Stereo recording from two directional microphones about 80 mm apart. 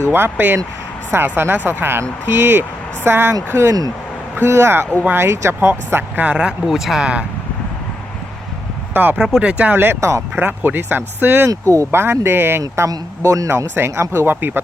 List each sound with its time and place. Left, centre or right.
0.0 s speech: right
3.5 s speech: right; by 7.3 s centre
8.9 s speech: right
9.1 s speech: centre
9.7 s speech: right
10.0 s speech: right
10.3 s speech: right
11.7 s speech: right
12.9 s a man's voice: right
13.6 s speech: right